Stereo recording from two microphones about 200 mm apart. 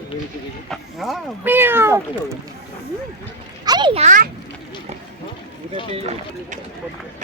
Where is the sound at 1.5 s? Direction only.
10° right (ahead or behind).